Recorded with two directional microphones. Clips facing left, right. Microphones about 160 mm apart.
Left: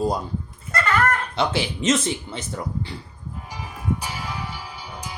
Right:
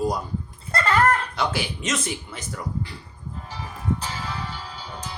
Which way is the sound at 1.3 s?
25° left (ahead or behind).